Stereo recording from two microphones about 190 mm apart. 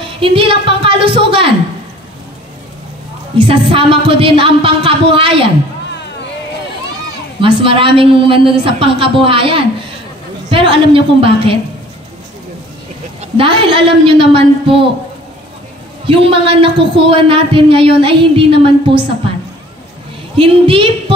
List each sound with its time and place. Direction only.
0.2 s a man's voice: 30° right (ahead or behind)
3.3 s a man's voice: 25° right (ahead or behind)
7.3 s a man's voice: 25° right (ahead or behind)
13.2 s a man's voice: 25° right (ahead or behind)
16.1 s a man's voice: 30° right (ahead or behind)
20.3 s a man's voice: 30° right (ahead or behind)